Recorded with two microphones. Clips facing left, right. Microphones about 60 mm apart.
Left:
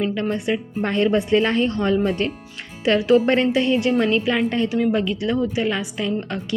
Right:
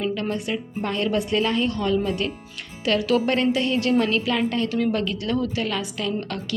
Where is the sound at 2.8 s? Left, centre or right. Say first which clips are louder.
Left 5 dB; left.